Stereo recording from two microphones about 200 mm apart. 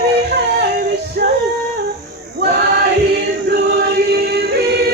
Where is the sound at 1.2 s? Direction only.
50° right (ahead or behind).